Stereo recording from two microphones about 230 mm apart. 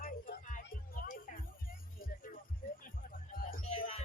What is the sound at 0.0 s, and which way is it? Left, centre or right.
Music, left.